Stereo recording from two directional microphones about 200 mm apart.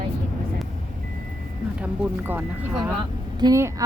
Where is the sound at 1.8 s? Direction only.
10° right (ahead or behind).